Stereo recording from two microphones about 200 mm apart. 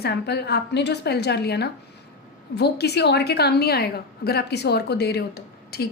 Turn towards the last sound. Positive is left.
turn(degrees=50)  # may be behind; listen again after turning